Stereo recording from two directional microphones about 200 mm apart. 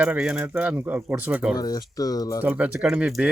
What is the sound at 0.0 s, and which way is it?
Speech, 5° right (ahead or behind).